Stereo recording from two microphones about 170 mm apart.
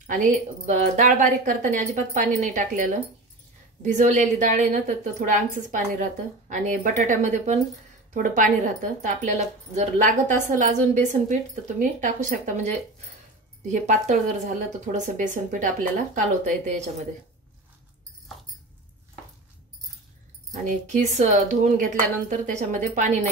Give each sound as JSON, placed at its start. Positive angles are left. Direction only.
{"t": 0.0, "sound": "speech", "side_deg": -50}
{"t": 20.5, "sound": "speech", "side_deg": -50}